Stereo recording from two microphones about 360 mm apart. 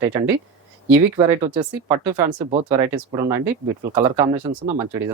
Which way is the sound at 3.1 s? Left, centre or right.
Centre.